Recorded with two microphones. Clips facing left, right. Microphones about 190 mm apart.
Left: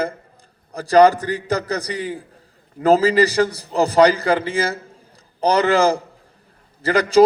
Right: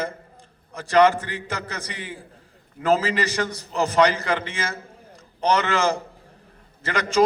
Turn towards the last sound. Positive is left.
turn(degrees=35)  # may be behind; listen again after turning